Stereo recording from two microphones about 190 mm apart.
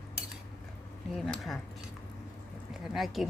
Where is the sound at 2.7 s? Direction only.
Centre (ahead or behind).